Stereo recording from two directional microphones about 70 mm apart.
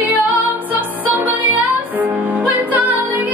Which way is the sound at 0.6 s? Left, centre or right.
Right.